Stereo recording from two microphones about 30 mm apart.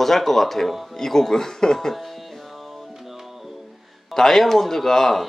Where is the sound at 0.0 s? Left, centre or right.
Centre.